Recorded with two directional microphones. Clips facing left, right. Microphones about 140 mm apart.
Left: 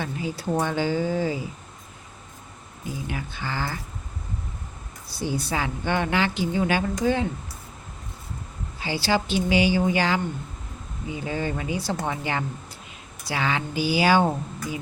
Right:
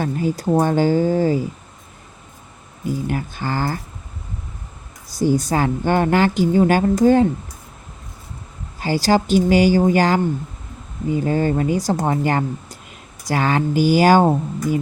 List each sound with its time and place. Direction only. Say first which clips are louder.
0.0 s a woman's voice: right 8 dB; 45° right (ahead or behind)
3.1 s a woman's voice: right 8 dB; 45° right (ahead or behind)
5.0 s a woman's voice: right 10 dB; 45° right (ahead or behind)
8.8 s a woman's voice: right 7 dB; 45° right (ahead or behind)